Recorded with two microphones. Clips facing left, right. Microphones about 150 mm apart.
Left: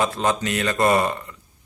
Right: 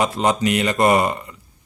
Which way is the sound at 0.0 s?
15° right (ahead or behind).